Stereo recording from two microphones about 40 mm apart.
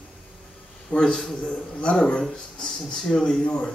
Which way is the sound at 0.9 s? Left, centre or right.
Left.